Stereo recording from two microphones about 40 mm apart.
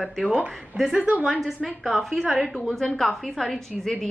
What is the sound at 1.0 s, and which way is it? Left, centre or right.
Speech, right.